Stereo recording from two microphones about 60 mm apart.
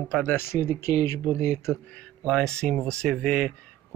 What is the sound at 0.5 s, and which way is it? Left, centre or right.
Speech, left.